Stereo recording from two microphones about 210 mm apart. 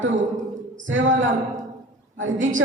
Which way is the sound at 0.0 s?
65° right (ahead or behind).